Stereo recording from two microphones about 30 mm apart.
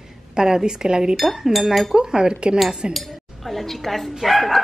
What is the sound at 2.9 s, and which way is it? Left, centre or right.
Speech, centre.